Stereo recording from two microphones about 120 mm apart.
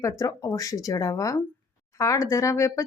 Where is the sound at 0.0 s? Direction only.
25° left (ahead or behind).